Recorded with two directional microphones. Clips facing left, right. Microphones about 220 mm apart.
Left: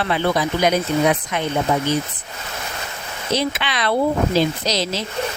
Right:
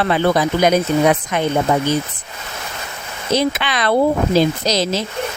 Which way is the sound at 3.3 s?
45° right (ahead or behind).